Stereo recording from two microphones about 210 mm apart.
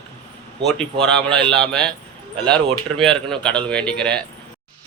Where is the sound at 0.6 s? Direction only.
Centre (ahead or behind).